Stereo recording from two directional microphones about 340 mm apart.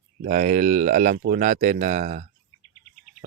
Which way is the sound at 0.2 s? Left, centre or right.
Right.